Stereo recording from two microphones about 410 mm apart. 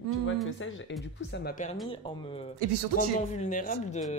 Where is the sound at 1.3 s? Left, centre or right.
Left.